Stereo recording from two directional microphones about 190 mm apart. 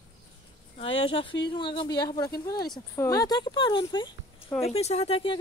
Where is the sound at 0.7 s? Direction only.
30° left (ahead or behind).